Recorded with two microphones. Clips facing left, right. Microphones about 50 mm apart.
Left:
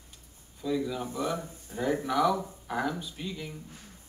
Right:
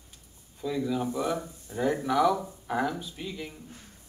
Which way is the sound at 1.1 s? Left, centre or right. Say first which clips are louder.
Right 2 dB; centre.